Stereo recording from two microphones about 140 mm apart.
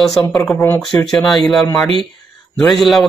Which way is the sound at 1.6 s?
25° left (ahead or behind).